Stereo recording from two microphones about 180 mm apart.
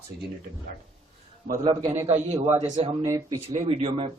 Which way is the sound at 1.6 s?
25° right (ahead or behind).